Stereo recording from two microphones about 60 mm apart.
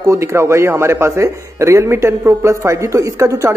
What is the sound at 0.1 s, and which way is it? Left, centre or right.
A man's voice, right.